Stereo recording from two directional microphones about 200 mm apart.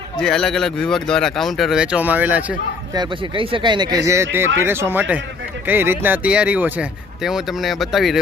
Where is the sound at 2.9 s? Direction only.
20° right (ahead or behind).